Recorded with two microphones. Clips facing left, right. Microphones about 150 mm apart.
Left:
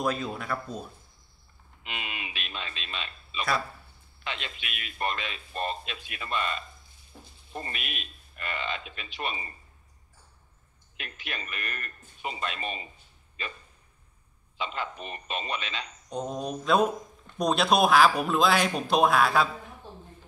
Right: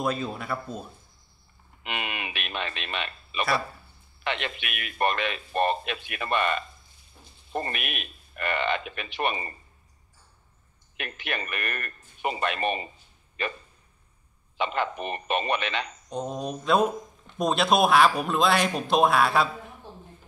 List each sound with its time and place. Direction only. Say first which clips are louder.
0.0 s speech: right 1 dB; 5° right (ahead or behind)
1.8 s a sound: right 5 dB; 65° right (ahead or behind)
4.2 s a man's voice: right 7 dB; 65° right (ahead or behind)
11.0 s a man's voice: right 6 dB; 65° right (ahead or behind)
14.6 s a man's voice: right 6 dB; 65° right (ahead or behind)
16.1 s speech: left 1 dB; centre (ahead or behind)